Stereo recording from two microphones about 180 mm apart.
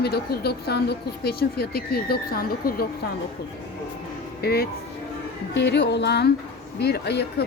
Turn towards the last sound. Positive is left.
turn(degrees=65)  # may be behind; listen again after turning